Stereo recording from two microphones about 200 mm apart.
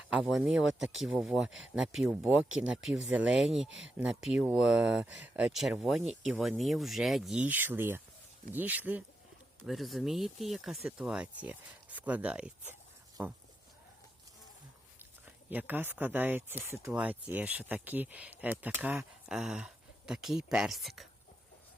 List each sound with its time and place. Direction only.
0.1 s speech: 5° right (ahead or behind)
3.7 s speech: 70° right (ahead or behind)
3.9 s speech: 5° right (ahead or behind)
15.4 s speech: 10° right (ahead or behind)